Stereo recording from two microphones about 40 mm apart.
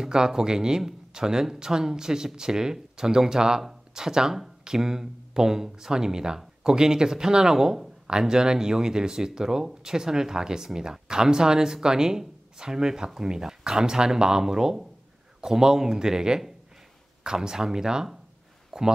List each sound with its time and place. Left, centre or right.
0.0 s speech: centre